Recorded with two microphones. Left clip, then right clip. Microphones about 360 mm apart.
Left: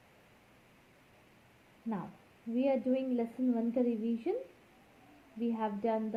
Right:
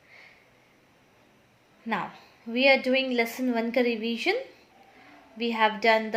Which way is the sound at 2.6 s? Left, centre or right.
Right.